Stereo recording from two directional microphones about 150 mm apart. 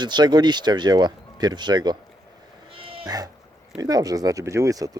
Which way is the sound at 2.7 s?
35° right (ahead or behind).